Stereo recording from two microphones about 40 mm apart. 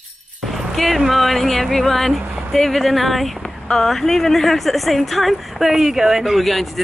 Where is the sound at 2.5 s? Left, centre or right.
Centre.